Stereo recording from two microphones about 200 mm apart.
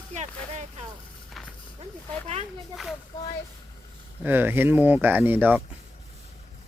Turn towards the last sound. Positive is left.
turn(degrees=-10)  # may be behind; listen again after turning